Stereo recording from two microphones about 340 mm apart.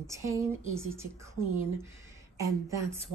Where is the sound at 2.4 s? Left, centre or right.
Centre.